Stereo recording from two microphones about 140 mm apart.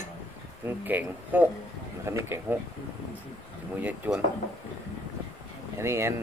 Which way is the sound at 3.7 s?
10° right (ahead or behind).